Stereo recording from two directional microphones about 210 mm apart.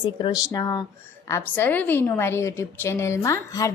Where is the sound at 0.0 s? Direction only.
20° left (ahead or behind).